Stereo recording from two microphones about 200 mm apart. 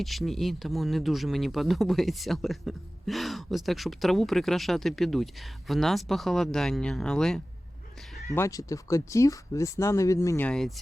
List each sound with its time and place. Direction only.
0.0 s speech: centre (ahead or behind)
8.4 s speech: 15° left (ahead or behind)